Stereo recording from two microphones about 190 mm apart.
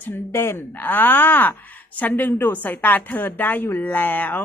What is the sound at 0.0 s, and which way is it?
A woman's voice, 10° left (ahead or behind).